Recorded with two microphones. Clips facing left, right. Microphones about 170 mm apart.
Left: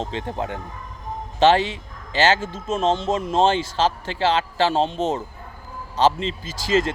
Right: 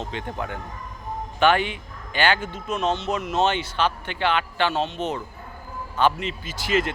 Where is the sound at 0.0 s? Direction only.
30° left (ahead or behind).